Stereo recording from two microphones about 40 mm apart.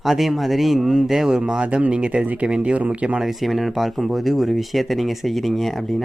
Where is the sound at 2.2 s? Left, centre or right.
Right.